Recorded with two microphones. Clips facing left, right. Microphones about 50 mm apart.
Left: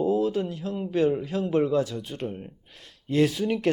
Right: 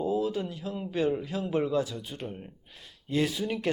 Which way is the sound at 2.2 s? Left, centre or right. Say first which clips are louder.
Left 7 dB; centre.